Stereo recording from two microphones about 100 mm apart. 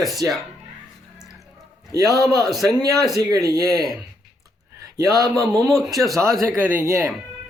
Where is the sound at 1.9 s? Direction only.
35° right (ahead or behind).